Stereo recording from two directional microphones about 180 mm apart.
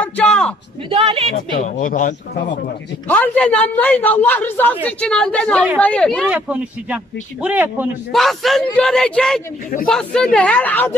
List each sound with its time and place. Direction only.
0.0 s a sound: 5° left (ahead or behind)
0.8 s a woman's voice: 30° right (ahead or behind)
1.3 s speech: 50° left (ahead or behind)
3.1 s a man's voice: 10° left (ahead or behind)
6.2 s speech: 10° right (ahead or behind)
8.1 s speech: centre (ahead or behind)